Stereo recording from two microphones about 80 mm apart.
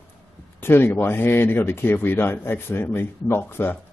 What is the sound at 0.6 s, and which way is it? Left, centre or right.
Speech, left.